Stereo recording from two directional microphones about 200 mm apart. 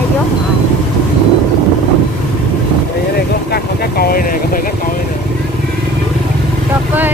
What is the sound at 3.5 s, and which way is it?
Speech, 50° left (ahead or behind).